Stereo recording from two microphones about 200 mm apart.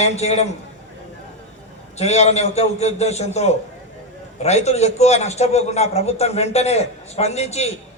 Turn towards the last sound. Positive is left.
turn(degrees=35)  # may be behind; listen again after turning